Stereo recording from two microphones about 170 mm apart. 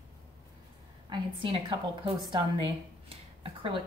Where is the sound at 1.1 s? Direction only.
30° right (ahead or behind).